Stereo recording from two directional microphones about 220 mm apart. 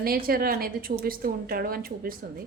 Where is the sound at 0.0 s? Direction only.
40° right (ahead or behind).